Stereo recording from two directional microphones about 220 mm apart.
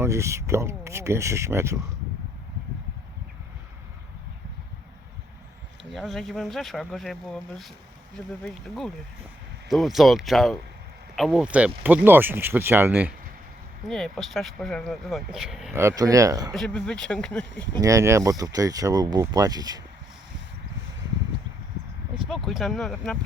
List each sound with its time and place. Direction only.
0.0 s speech: 15° right (ahead or behind)
5.9 s speech: centre (ahead or behind); by 16.6 s 15° right (ahead or behind)
16.6 s speech: 5° left (ahead or behind)
17.7 s speech: 15° right (ahead or behind)
22.3 s speech: centre (ahead or behind)